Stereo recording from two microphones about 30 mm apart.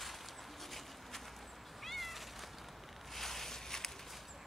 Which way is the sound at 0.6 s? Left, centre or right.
Centre.